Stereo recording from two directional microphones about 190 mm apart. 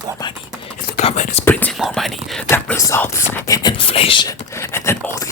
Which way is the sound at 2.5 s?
15° left (ahead or behind).